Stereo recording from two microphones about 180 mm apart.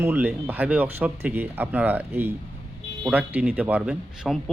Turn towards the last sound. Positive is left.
turn(degrees=-5)  # may be behind; listen again after turning